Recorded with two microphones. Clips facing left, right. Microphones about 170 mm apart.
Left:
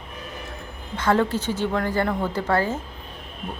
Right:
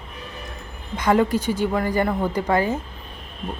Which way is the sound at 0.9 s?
15° right (ahead or behind).